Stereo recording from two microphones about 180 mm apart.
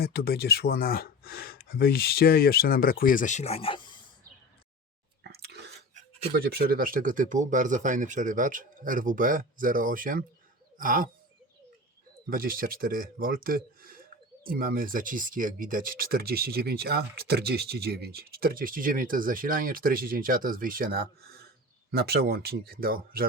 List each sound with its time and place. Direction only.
0.0 s speech: 60° left (ahead or behind); by 3.9 s 30° left (ahead or behind)
5.2 s chewing: 65° right (ahead or behind)
6.3 s speech: 55° right (ahead or behind)
10.8 s bird: 50° right (ahead or behind)
12.3 s speech: 55° right (ahead or behind)